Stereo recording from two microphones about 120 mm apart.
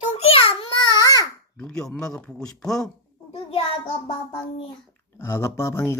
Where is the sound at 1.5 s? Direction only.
5° left (ahead or behind).